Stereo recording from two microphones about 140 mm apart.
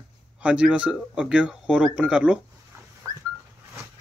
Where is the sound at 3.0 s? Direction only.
25° right (ahead or behind).